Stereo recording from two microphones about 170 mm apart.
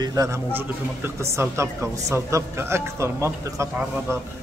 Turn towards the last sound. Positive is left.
turn(degrees=-15)  # may be behind; listen again after turning